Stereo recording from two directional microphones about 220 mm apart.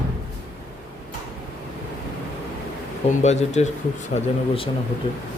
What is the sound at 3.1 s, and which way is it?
Speech, 30° left (ahead or behind).